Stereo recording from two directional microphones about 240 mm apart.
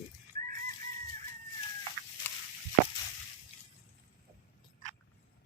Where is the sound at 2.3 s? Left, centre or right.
Centre.